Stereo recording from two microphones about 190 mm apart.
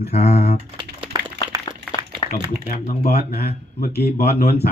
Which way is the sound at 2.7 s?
40° left (ahead or behind).